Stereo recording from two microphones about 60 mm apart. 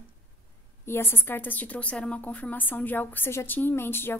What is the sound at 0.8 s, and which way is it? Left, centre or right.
A woman's voice, left.